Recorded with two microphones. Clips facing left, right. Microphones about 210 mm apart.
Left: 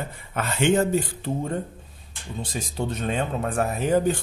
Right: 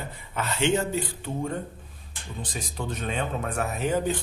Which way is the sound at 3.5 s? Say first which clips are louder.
Left 5 dB; 45° left (ahead or behind).